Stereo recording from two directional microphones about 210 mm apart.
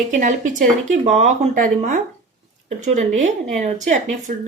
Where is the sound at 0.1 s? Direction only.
35° right (ahead or behind).